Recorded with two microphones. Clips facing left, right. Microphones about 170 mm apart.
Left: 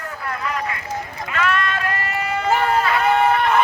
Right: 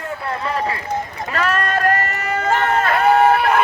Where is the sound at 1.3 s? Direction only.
40° right (ahead or behind).